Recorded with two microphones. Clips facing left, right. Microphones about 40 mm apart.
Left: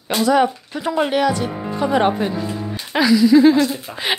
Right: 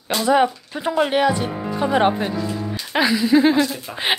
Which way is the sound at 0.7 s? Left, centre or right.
Centre.